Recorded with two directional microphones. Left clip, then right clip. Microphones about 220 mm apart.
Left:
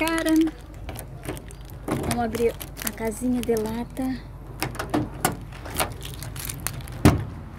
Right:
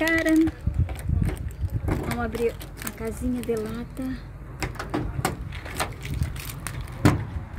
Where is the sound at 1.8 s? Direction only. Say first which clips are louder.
Left 3 dB; 35° left (ahead or behind).